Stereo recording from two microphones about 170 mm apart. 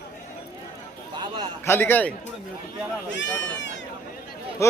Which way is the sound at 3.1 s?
90° left.